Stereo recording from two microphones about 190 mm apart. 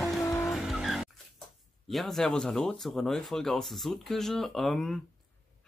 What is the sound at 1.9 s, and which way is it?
Speech, centre (ahead or behind).